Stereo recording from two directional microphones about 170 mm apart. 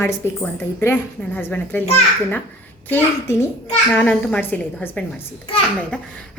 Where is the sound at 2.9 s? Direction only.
15° left (ahead or behind).